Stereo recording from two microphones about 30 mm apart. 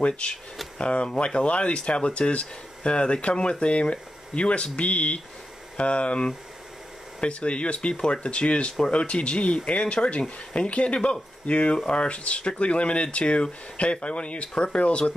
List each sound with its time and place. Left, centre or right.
0.7 s speech: left
4.7 s speech: left